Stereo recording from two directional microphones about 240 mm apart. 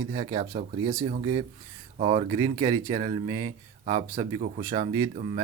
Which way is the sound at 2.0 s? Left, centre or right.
Centre.